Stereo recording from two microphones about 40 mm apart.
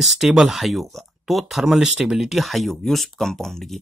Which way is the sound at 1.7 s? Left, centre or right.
Centre.